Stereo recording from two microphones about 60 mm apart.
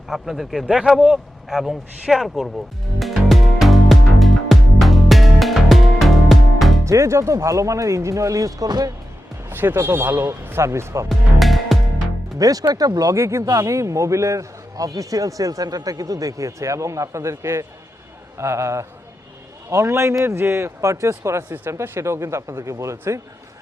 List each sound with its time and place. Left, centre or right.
0.1 s speech: centre
3.0 s music: centre
6.8 s a man's voice: right
9.5 s speech: right
11.1 s music: centre
12.4 s speech: right
13.1 s a man's voice: right